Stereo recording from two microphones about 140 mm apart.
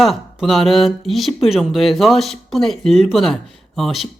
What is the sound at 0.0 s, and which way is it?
Speech, centre (ahead or behind).